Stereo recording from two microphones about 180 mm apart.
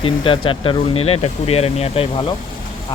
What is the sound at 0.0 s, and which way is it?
Speech, 30° left (ahead or behind).